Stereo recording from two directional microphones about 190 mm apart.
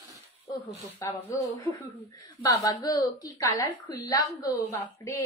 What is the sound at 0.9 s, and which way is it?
A woman's voice, 10° left (ahead or behind).